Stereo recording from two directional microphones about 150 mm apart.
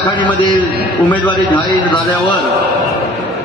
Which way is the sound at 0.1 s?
30° left (ahead or behind).